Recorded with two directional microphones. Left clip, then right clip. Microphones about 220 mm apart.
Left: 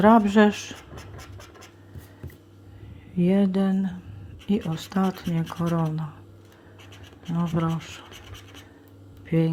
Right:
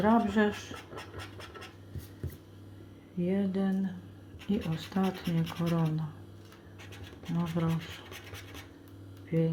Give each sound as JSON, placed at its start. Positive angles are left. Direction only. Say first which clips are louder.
{"t": 0.0, "sound": "speech", "louder": "left 10 dB", "side_deg": 35}
{"t": 0.9, "sound": "scratch", "louder": "even", "side_deg": 10}
{"t": 3.2, "sound": "speech", "louder": "left 9 dB", "side_deg": 35}
{"t": 7.5, "sound": "speech", "louder": "left 7 dB", "side_deg": 25}
{"t": 9.2, "sound": "speech", "louder": "left 6 dB", "side_deg": 40}